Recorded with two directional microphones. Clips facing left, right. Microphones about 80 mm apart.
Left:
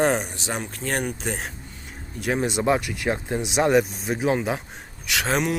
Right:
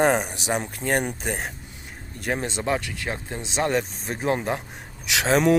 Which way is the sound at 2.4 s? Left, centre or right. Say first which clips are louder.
Left 7 dB; centre.